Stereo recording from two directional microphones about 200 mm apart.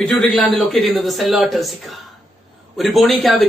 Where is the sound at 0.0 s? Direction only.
Centre (ahead or behind).